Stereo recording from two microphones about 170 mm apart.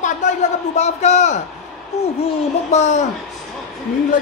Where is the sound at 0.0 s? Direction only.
45° left (ahead or behind).